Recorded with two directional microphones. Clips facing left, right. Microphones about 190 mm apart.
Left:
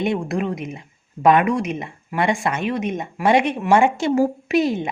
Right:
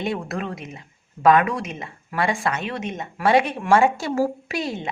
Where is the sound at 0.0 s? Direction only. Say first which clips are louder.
Left 5 dB; 15° left (ahead or behind).